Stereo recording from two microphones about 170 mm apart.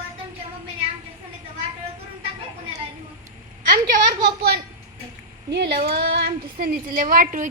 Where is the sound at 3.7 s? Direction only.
55° right (ahead or behind).